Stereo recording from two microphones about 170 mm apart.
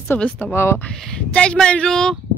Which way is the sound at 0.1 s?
10° left (ahead or behind).